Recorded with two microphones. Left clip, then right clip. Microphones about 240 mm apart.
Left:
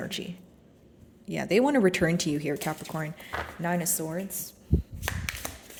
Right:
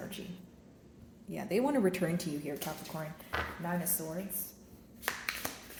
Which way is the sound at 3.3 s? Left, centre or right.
Left.